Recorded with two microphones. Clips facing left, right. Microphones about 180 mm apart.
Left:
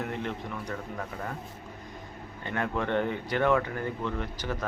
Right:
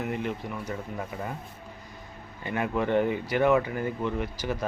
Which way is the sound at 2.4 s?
10° right (ahead or behind).